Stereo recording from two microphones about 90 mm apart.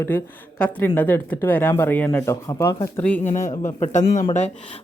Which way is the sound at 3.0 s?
15° left (ahead or behind).